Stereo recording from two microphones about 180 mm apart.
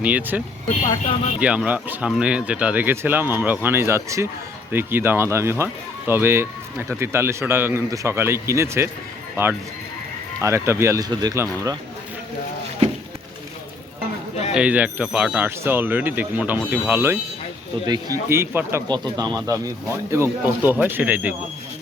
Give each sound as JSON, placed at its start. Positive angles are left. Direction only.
{"t": 0.0, "sound": "speech", "side_deg": -10}
{"t": 0.9, "sound": "speech", "side_deg": 25}
{"t": 1.4, "sound": "speech", "side_deg": -5}
{"t": 10.4, "sound": "speech", "side_deg": -15}
{"t": 14.5, "sound": "speech", "side_deg": -10}